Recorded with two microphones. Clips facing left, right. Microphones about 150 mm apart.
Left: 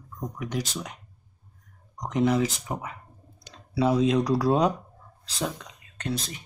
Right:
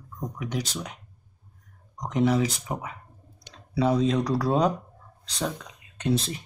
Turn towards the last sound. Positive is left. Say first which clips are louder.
# right 6 dB
turn(degrees=-30)  # may be behind; listen again after turning